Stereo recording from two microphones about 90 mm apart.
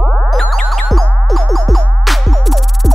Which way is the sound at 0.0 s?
Centre (ahead or behind).